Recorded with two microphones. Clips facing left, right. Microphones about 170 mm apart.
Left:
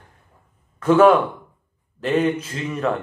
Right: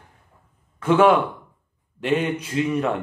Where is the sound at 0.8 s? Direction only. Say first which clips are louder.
Left 3 dB; 10° right (ahead or behind).